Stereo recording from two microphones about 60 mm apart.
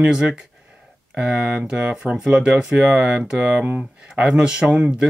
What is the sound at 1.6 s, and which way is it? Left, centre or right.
Speech, centre.